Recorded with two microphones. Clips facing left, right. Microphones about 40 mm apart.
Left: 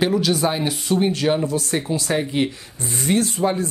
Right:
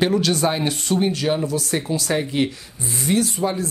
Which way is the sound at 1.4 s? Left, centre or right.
Left.